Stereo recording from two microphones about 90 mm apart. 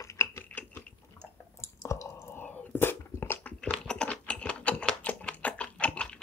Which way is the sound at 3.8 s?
10° left (ahead or behind).